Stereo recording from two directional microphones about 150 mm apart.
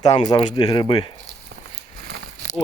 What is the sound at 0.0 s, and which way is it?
Speech, 25° left (ahead or behind).